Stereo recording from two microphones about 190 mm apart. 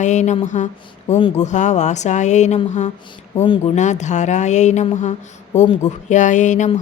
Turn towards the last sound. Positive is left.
turn(degrees=40)  # may be behind; listen again after turning